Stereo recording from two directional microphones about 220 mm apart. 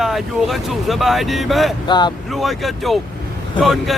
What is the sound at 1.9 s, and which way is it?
Speech, 20° left (ahead or behind).